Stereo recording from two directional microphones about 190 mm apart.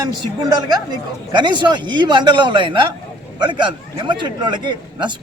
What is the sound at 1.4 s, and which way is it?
A man's voice, 25° right (ahead or behind).